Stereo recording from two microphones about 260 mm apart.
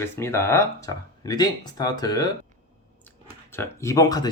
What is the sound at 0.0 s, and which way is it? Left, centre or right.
Speech, centre.